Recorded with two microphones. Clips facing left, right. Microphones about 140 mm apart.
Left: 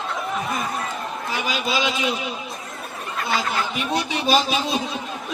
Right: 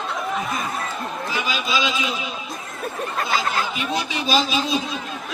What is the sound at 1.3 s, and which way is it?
Speech, 55° left (ahead or behind).